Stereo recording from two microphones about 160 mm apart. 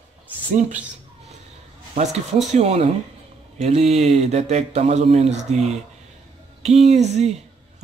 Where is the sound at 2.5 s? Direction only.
40° right (ahead or behind).